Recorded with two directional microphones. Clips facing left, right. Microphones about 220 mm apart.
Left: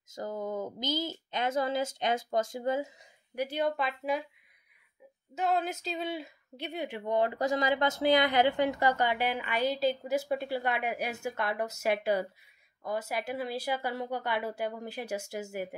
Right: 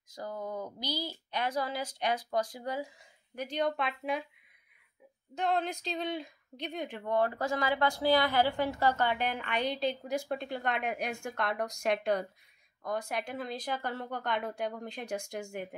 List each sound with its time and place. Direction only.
0.1 s speech: 20° left (ahead or behind)
3.3 s speech: 5° left (ahead or behind)
5.3 s speech: 5° left (ahead or behind)